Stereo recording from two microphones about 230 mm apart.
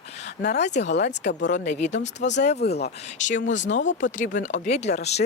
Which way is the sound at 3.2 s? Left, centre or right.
Left.